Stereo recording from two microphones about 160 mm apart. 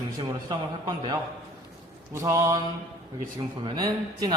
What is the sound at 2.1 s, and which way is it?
Speech, 20° right (ahead or behind).